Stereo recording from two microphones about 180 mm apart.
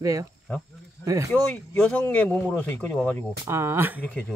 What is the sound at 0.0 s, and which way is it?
Speech, 20° right (ahead or behind).